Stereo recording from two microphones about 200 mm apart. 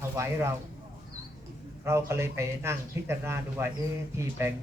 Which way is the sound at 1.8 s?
15° right (ahead or behind).